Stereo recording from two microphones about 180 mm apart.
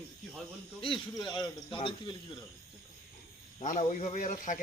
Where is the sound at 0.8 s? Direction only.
25° left (ahead or behind).